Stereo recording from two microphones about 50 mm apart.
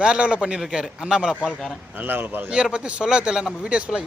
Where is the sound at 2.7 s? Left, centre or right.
Right.